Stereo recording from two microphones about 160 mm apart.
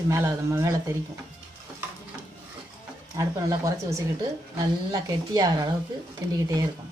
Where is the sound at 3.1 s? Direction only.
20° right (ahead or behind).